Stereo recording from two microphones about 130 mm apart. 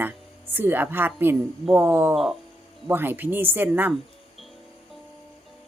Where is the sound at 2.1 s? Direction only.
Centre (ahead or behind).